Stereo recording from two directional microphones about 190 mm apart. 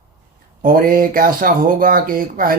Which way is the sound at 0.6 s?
45° right (ahead or behind).